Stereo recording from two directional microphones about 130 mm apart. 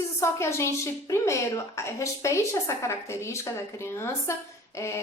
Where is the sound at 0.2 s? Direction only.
20° left (ahead or behind).